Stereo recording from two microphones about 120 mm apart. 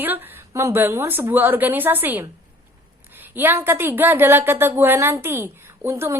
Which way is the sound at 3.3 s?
20° right (ahead or behind).